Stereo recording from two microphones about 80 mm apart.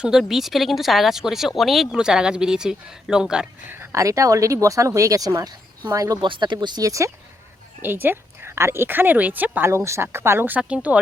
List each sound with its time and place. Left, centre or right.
0.0 s speech: centre
3.9 s speech: right
6.2 s speech: right
6.8 s speech: right
7.8 s a woman's voice: right
9.6 s speech: right; by 11.0 s centre